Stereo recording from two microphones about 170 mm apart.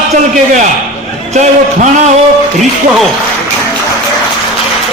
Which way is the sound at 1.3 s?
45° right (ahead or behind).